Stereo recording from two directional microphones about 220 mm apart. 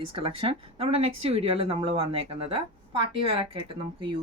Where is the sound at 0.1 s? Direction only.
25° right (ahead or behind).